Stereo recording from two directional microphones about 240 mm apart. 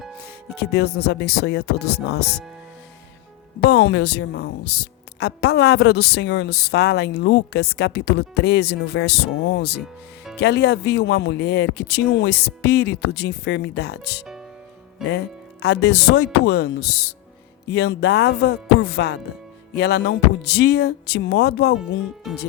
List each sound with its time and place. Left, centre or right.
0.2 s speech: left
3.6 s a woman's voice: left
15.6 s a woman's voice: left
21.8 s speech: centre